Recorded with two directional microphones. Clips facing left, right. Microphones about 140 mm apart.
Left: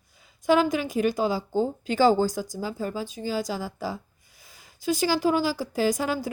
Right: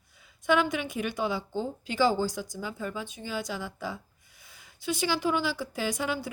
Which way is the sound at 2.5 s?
35° left (ahead or behind).